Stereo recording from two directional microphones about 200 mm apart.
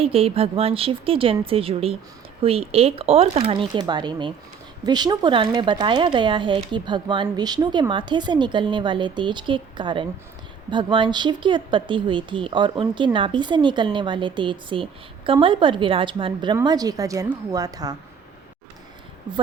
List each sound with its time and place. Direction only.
0.0 s speech: 30° right (ahead or behind)